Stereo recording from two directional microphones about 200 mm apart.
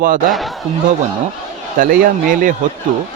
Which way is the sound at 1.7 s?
45° right (ahead or behind).